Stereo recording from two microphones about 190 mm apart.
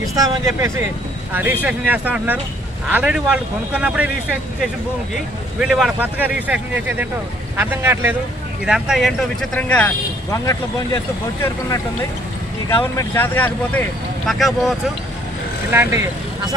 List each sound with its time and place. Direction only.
0.1 s speech: 15° right (ahead or behind)
5.1 s speech: centre (ahead or behind); by 11.0 s 15° left (ahead or behind)
12.6 s speech: 15° left (ahead or behind); by 14.8 s centre (ahead or behind)
15.7 s speech: 10° right (ahead or behind)